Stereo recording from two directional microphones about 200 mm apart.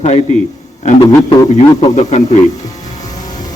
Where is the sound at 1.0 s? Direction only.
15° left (ahead or behind).